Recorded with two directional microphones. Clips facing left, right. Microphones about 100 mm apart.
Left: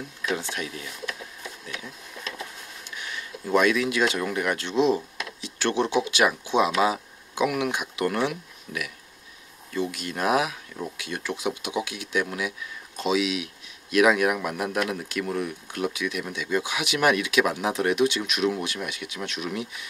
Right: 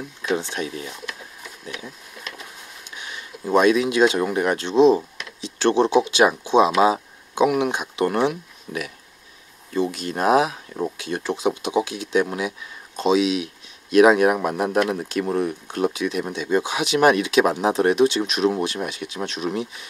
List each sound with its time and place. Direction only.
0.2 s speech: 25° right (ahead or behind)
3.0 s speech: 20° right (ahead or behind)